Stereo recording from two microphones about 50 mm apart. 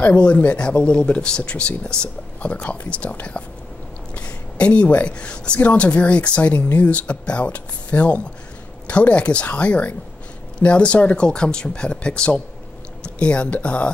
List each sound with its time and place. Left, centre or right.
0.2 s speech: left
6.4 s speech: left